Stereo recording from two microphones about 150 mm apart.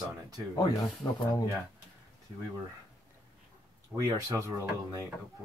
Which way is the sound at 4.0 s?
20° right (ahead or behind).